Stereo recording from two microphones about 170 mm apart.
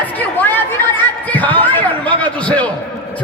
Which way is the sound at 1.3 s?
10° left (ahead or behind).